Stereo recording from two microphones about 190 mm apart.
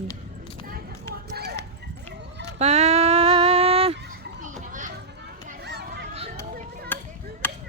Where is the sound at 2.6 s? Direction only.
35° right (ahead or behind).